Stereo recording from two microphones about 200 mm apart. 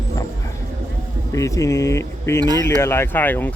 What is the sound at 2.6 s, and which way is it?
Speech, 10° left (ahead or behind).